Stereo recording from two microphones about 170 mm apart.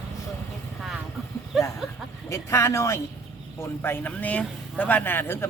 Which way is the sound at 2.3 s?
15° left (ahead or behind).